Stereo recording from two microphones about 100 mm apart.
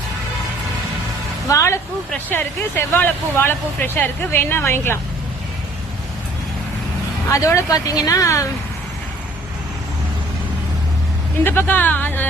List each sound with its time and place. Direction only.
1.5 s speech: 30° left (ahead or behind)
7.3 s speech: 30° left (ahead or behind)
11.4 s speech: 20° left (ahead or behind)